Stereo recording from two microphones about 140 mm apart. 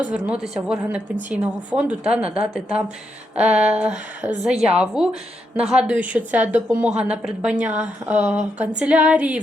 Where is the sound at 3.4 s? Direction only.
50° right (ahead or behind).